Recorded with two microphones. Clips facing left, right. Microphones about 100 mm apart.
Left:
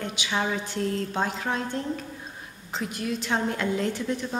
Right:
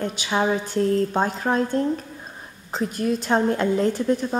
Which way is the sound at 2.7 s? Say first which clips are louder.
Right 6 dB; 40° right (ahead or behind).